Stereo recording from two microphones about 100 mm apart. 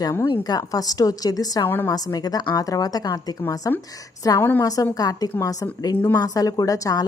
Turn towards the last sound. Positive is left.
turn(degrees=35)  # may be behind; listen again after turning